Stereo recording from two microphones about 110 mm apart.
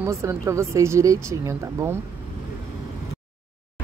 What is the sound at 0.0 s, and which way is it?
Speech, 25° right (ahead or behind).